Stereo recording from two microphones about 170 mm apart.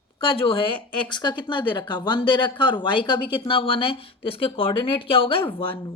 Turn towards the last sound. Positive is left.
turn(degrees=30)  # may be behind; listen again after turning